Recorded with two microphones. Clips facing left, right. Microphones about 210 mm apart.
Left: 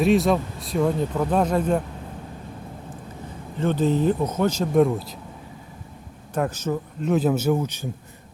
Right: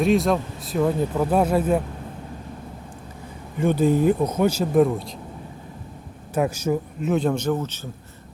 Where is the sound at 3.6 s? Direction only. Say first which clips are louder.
Right 2 dB; 10° right (ahead or behind).